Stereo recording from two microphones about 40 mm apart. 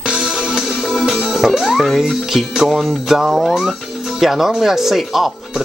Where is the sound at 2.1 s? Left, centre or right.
Centre.